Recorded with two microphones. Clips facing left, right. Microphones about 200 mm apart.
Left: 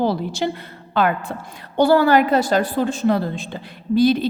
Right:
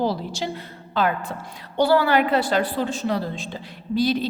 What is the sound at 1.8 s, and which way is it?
A woman's voice, 45° left (ahead or behind).